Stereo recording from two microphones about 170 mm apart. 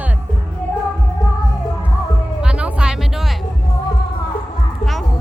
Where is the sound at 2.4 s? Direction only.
5° right (ahead or behind).